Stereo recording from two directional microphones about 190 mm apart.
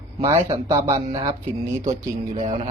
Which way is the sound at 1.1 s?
20° right (ahead or behind).